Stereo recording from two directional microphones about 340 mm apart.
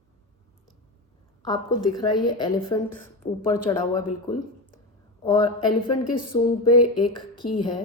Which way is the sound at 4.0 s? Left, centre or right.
Left.